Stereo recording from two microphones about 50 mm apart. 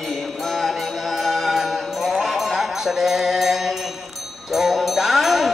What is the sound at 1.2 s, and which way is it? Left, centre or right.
Music, centre.